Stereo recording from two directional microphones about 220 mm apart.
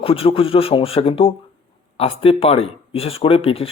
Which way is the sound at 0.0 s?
25° left (ahead or behind).